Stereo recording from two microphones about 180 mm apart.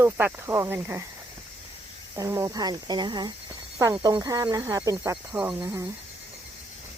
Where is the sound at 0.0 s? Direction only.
10° right (ahead or behind).